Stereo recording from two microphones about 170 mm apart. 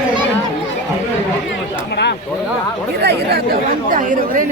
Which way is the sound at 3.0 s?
70° right (ahead or behind).